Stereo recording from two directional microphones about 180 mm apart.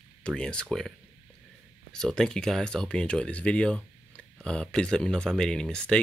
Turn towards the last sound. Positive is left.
turn(degrees=5)  # may be behind; listen again after turning